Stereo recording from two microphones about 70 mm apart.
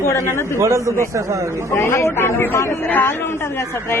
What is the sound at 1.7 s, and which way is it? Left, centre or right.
Speech, left.